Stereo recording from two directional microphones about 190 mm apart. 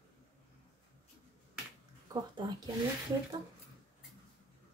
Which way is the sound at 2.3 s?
20° right (ahead or behind).